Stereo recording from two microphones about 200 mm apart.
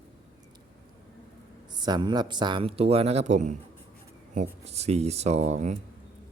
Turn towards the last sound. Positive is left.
turn(degrees=-35)  # may be behind; listen again after turning